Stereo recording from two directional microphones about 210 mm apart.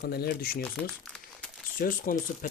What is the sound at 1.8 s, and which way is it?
Speech, 40° left (ahead or behind).